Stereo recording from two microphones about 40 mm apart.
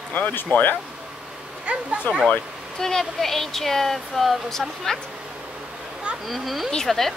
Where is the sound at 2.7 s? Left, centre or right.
Centre.